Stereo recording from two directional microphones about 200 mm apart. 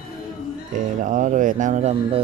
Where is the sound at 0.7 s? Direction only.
40° right (ahead or behind).